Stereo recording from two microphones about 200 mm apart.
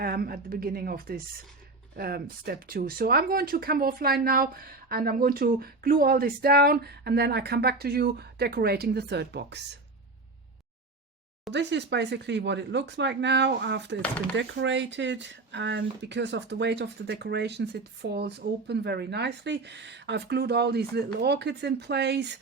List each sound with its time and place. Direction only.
0.0 s speech: 50° right (ahead or behind)
11.5 s speech: 60° right (ahead or behind)